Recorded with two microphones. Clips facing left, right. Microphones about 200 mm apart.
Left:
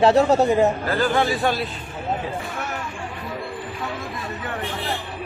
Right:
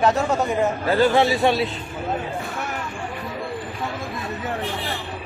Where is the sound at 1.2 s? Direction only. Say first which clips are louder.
Right 3 dB; centre (ahead or behind).